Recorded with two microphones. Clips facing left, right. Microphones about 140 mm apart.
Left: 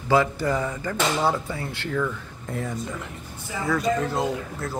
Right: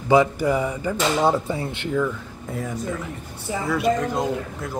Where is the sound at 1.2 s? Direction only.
20° right (ahead or behind); by 3.1 s centre (ahead or behind).